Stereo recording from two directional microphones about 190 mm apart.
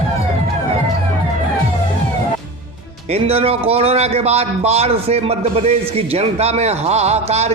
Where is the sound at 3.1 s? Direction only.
30° right (ahead or behind).